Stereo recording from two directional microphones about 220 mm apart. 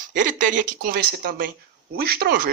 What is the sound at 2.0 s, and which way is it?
Speech, 45° right (ahead or behind).